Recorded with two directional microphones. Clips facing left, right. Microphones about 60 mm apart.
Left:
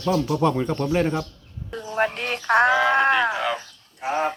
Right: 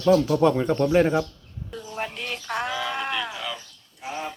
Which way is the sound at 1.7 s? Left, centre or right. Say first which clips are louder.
Left 8 dB; left.